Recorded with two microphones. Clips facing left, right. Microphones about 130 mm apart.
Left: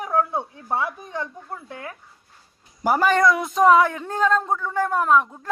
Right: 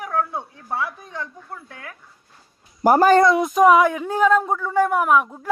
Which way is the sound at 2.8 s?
45° right (ahead or behind).